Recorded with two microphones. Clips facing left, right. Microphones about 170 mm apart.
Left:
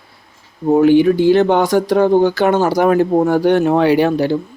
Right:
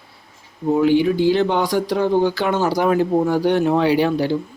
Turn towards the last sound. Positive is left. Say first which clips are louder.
# left 4 dB
turn(degrees=55)  # may be behind; listen again after turning